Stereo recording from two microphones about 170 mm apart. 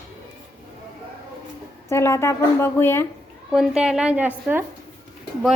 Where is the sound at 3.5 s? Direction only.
5° right (ahead or behind).